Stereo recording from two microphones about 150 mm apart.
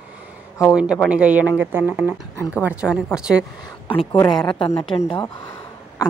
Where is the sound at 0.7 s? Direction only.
5° right (ahead or behind).